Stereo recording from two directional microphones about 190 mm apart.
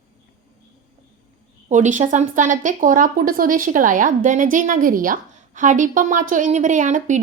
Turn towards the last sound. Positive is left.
turn(degrees=-40)  # may be behind; listen again after turning